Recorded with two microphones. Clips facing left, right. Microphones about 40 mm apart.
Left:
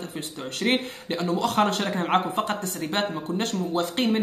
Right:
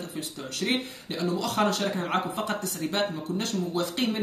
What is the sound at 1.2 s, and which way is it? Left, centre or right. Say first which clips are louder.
Speech: left 3 dB; left.